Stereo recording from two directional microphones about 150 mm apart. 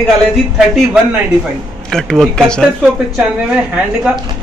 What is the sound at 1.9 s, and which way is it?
Speech, 5° left (ahead or behind).